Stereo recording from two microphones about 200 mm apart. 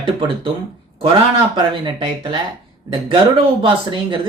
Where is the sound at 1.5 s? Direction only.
25° right (ahead or behind).